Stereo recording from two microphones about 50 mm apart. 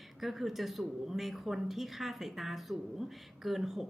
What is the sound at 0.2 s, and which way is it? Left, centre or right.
A woman's voice, centre.